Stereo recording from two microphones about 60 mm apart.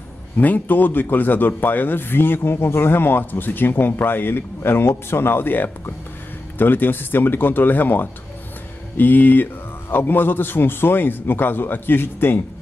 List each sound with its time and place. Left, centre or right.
0.4 s a man's voice: left